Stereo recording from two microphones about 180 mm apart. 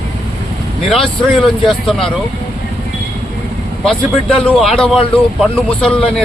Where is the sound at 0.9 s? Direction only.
Centre (ahead or behind).